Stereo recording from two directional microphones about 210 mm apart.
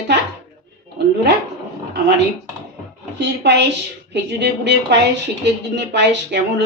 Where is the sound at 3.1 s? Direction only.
55° right (ahead or behind).